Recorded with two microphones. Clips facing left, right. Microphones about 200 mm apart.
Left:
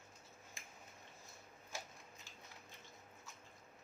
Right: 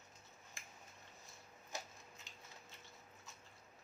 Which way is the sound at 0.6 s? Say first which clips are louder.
Right 1 dB; 15° left (ahead or behind).